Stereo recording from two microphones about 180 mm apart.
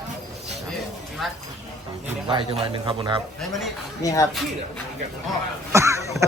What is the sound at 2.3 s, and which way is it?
Speech, 25° right (ahead or behind).